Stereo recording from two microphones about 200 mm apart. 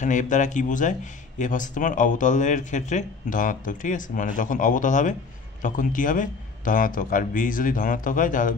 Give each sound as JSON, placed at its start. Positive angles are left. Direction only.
{"t": 0.0, "sound": "speech", "side_deg": 40}